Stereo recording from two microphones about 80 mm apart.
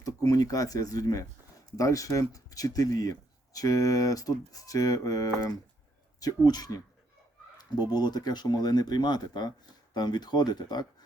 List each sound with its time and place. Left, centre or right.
0.0 s speech: left
7.9 s speech: left